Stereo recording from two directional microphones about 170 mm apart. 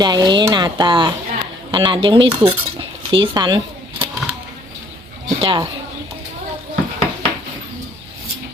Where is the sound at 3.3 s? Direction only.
25° right (ahead or behind).